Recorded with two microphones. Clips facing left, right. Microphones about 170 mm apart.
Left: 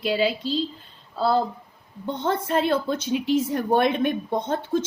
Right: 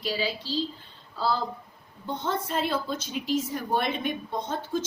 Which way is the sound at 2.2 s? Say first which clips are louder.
Left 7 dB; 60° left (ahead or behind).